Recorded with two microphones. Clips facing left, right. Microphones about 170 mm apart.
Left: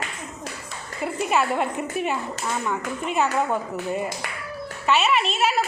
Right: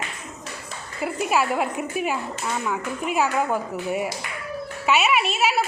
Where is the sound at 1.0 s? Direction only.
5° right (ahead or behind).